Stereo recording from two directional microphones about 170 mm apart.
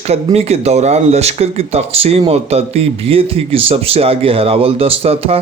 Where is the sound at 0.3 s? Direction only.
35° right (ahead or behind).